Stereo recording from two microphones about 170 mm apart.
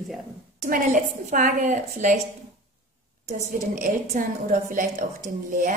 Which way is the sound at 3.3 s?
45° right (ahead or behind).